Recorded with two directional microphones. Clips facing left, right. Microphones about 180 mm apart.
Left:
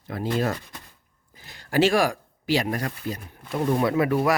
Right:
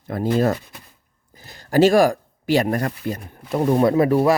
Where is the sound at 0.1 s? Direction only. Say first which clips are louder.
Right 6 dB; 45° right (ahead or behind).